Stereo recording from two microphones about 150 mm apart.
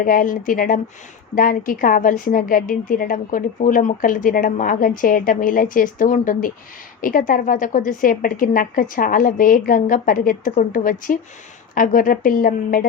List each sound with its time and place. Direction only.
0.0 s a woman's voice: 65° left (ahead or behind)